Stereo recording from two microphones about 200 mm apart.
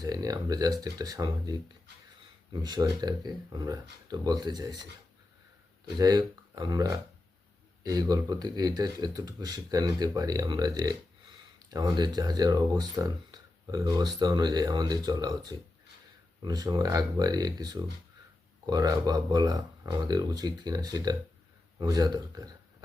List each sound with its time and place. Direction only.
0.0 s speech: 20° right (ahead or behind)
6.0 s speech: 20° right (ahead or behind)